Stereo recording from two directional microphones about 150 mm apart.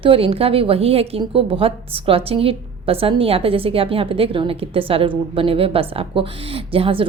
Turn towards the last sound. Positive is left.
turn(degrees=-40)  # may be behind; listen again after turning